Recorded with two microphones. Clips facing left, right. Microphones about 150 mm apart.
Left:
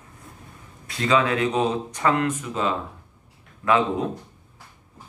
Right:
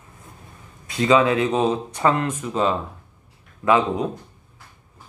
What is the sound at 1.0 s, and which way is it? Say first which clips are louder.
Speech: right 4 dB; 20° right (ahead or behind).